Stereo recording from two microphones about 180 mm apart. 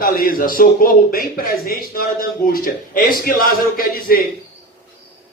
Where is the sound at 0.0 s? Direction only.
55° left (ahead or behind).